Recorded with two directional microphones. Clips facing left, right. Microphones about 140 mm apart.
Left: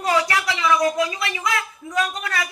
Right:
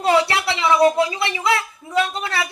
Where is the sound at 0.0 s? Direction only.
25° right (ahead or behind).